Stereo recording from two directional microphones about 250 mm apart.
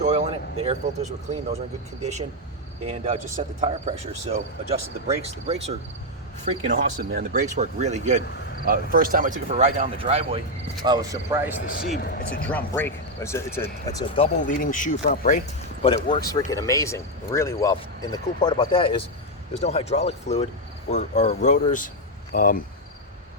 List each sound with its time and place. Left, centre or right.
0.6 s speech: right
6.4 s speech: right; by 11.5 s centre
11.7 s speech: left
12.5 s speech: centre
14.2 s speech: left
15.8 s speech: left